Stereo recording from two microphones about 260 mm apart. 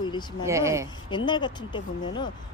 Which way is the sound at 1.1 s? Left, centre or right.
Centre.